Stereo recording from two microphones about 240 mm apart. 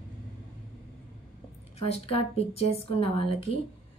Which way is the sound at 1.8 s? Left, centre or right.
Left.